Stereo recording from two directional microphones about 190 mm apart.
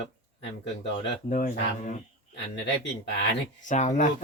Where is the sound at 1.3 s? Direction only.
45° left (ahead or behind).